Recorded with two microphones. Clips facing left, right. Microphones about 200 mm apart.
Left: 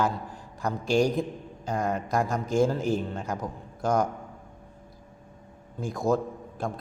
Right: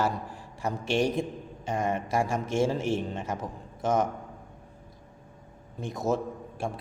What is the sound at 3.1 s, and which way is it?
Speech, 5° right (ahead or behind).